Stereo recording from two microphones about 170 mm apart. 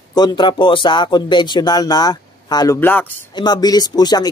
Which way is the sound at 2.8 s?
10° left (ahead or behind).